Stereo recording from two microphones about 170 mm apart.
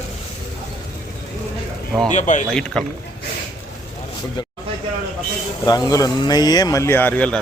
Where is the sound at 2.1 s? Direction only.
45° left (ahead or behind).